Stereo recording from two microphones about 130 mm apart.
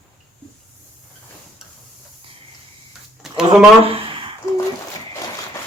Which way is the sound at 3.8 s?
45° right (ahead or behind).